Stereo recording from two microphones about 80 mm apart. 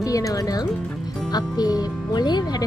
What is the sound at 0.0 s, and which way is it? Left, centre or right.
Speech, left.